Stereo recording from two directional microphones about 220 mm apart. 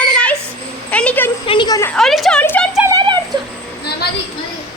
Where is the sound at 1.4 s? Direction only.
20° left (ahead or behind).